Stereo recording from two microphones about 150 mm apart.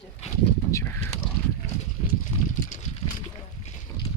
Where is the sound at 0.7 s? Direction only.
15° left (ahead or behind).